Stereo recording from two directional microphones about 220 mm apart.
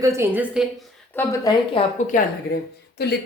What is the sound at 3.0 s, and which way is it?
Speech, 45° left (ahead or behind).